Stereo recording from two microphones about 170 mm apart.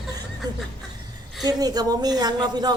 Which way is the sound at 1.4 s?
25° right (ahead or behind).